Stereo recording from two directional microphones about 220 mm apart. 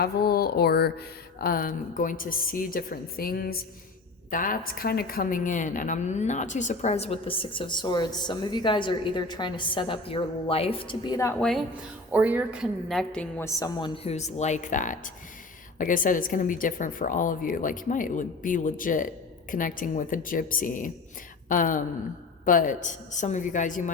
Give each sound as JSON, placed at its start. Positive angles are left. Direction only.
{"t": 0.0, "sound": "a sound", "side_deg": 45}
{"t": 4.3, "sound": "a woman's voice", "side_deg": 40}
{"t": 12.1, "sound": "a woman's voice", "side_deg": -5}